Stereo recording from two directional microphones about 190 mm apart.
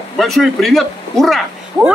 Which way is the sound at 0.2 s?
Centre (ahead or behind).